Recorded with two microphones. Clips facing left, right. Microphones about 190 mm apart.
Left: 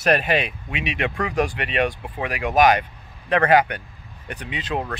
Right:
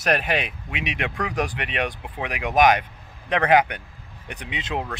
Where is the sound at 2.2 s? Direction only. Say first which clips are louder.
Left 2 dB; 10° right (ahead or behind).